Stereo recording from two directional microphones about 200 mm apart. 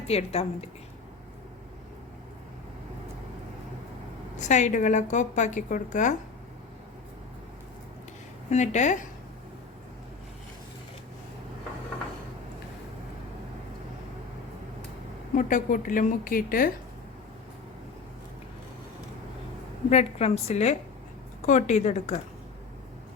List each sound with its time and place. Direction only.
0.1 s a woman's voice: 30° left (ahead or behind)
4.4 s a woman's voice: 35° left (ahead or behind)
8.4 s a woman's voice: 35° left (ahead or behind)
15.4 s a woman's voice: 40° left (ahead or behind)
19.9 s a woman's voice: 30° left (ahead or behind)